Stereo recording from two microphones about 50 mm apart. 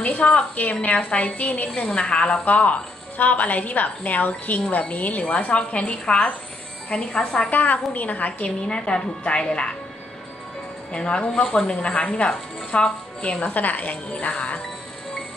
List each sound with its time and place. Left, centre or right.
0.0 s a woman's voice: left
7.4 s a woman's voice: left
10.9 s a woman's voice: left